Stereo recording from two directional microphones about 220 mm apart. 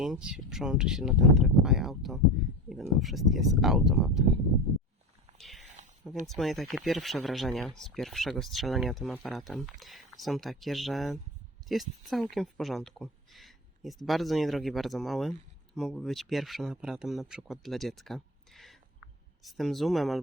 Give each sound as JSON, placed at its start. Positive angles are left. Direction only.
{"t": 0.0, "sound": "speech", "side_deg": -5}
{"t": 5.4, "sound": "a sound", "side_deg": 0}
{"t": 6.2, "sound": "speech", "side_deg": 0}